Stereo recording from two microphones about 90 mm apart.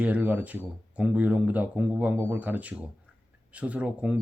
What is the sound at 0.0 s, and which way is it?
Speech, 15° right (ahead or behind).